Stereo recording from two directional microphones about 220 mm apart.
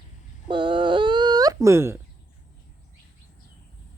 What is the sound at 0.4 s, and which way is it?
Wail, 20° right (ahead or behind).